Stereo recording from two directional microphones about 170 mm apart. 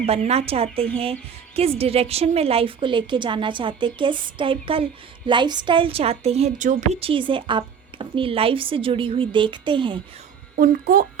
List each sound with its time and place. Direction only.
0.0 s a woman's voice: 40° right (ahead or behind)
10.6 s speech: 60° right (ahead or behind)